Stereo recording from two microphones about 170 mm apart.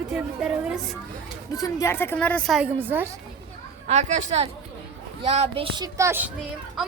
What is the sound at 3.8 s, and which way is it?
A woman's voice, 40° right (ahead or behind).